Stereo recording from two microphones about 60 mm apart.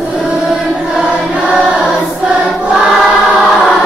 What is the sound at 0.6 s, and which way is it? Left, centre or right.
Music, centre.